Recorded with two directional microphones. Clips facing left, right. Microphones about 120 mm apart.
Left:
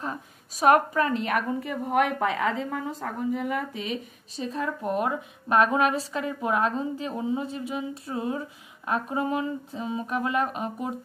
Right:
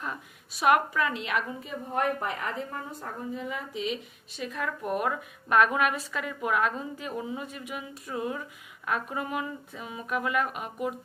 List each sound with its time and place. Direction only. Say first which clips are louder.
0.0 s a woman's voice: left 3 dB; 35° left (ahead or behind)
1.6 s a woman's voice: left 5 dB; 70° left (ahead or behind); by 3.9 s 55° left (ahead or behind)
4.4 s a woman's voice: left 3 dB; 30° left (ahead or behind)